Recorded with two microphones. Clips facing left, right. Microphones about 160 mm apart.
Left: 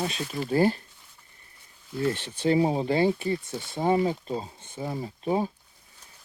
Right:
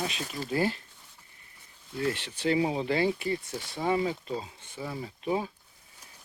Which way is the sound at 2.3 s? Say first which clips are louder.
Left 5 dB; 35° left (ahead or behind).